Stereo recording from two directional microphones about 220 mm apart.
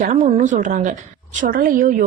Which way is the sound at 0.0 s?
35° right (ahead or behind).